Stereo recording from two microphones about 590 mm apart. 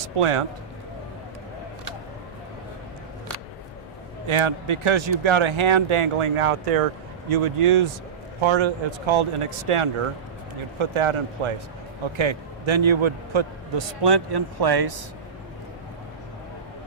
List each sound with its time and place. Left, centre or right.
0.2 s speech: right
4.3 s a man's voice: right